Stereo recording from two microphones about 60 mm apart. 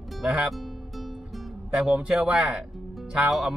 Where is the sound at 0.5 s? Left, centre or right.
Centre.